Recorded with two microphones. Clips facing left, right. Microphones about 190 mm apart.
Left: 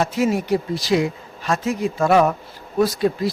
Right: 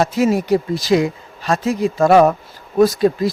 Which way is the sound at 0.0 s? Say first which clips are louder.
Right 4 dB; 40° right (ahead or behind).